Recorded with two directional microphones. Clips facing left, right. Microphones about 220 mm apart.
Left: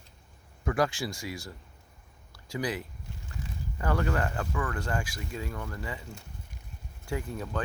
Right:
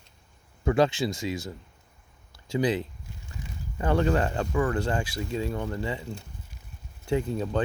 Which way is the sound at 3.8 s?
25° right (ahead or behind).